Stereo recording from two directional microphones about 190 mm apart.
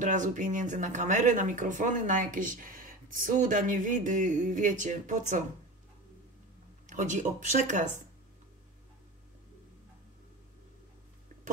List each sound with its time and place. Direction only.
0.0 s speech: 40° right (ahead or behind)
6.9 s speech: 40° right (ahead or behind)